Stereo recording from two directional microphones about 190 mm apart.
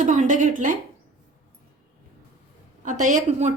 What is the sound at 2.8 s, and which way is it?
Speech, 40° right (ahead or behind).